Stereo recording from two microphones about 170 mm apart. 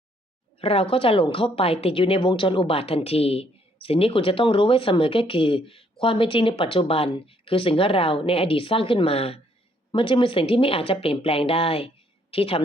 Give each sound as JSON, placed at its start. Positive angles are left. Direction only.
{"t": 0.6, "sound": "a woman's voice", "side_deg": 35}